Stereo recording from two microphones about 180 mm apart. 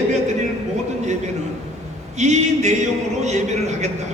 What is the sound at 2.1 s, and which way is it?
A man's voice, 40° right (ahead or behind).